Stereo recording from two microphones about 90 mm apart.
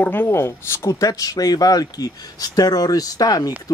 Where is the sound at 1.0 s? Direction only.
40° left (ahead or behind).